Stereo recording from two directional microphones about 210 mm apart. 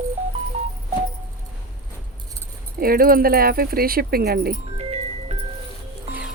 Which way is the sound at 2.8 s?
45° right (ahead or behind).